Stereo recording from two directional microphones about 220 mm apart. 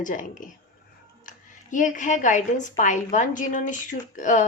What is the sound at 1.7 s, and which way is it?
A woman's voice, 35° left (ahead or behind).